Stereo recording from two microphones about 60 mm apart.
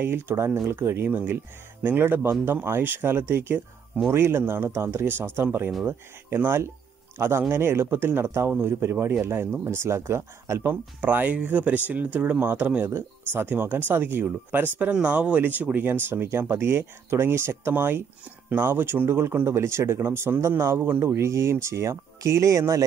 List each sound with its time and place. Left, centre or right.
0.0 s speech: right
9.7 s speech: right
10.7 s speech: right
21.0 s speech: right